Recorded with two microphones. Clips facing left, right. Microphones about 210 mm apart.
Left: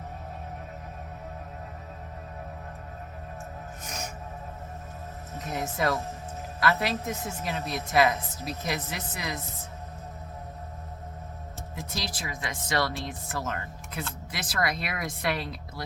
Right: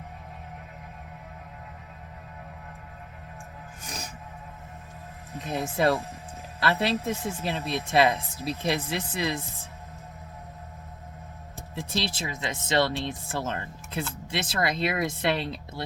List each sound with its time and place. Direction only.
3.8 s music: 35° right (ahead or behind)
5.4 s speech: 30° right (ahead or behind)
11.7 s speech: 30° right (ahead or behind)